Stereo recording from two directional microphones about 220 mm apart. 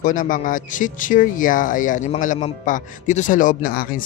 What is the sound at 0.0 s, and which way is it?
Speech, 35° left (ahead or behind).